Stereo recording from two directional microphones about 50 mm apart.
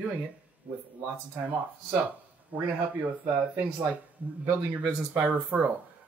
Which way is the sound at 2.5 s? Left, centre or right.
Right.